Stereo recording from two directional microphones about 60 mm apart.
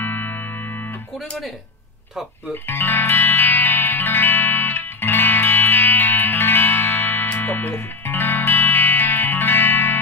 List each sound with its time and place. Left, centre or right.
0.0 s music: left
2.5 s speech: left
3.1 s music: left